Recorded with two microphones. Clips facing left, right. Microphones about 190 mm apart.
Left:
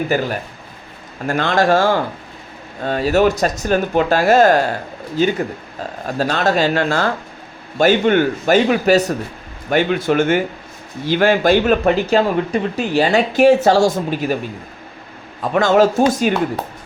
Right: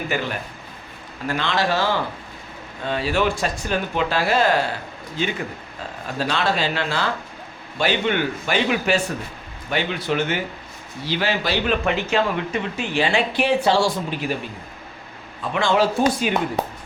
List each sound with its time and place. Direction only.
0.1 s speech: 40° left (ahead or behind)
15.4 s speech: 45° left (ahead or behind)